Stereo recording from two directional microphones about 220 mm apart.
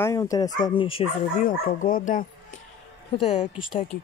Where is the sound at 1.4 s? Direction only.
35° left (ahead or behind).